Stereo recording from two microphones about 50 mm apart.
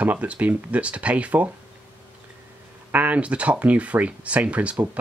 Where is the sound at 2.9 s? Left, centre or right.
Right.